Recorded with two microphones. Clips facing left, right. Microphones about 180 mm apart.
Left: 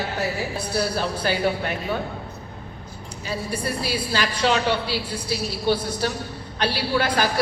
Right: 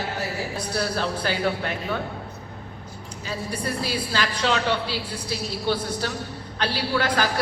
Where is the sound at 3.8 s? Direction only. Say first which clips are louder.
Left 1 dB; 15° left (ahead or behind).